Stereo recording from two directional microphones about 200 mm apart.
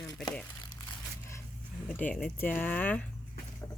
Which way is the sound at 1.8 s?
10° left (ahead or behind).